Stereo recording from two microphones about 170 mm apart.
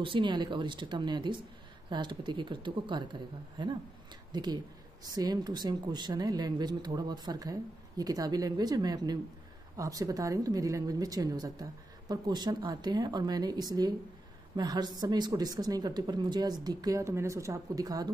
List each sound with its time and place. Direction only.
0.0 s a woman's voice: 30° right (ahead or behind)